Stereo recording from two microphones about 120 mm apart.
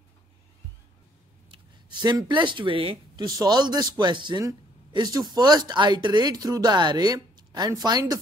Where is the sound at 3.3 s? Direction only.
35° right (ahead or behind).